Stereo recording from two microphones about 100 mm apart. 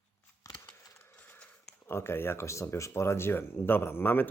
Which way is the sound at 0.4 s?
35° left (ahead or behind).